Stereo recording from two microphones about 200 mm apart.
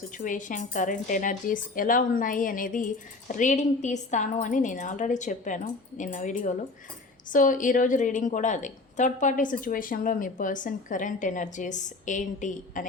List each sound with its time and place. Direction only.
0.3 s a woman's voice: 40° left (ahead or behind)